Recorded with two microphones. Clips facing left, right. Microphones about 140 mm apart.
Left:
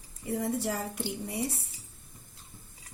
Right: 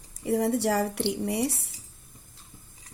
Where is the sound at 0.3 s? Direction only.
75° right (ahead or behind).